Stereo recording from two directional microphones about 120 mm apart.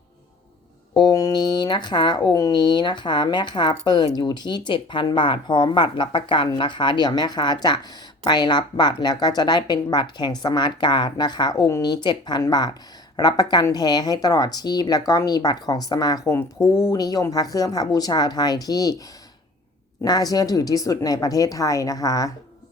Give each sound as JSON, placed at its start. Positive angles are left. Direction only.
{"t": 0.9, "sound": "speech", "side_deg": 30}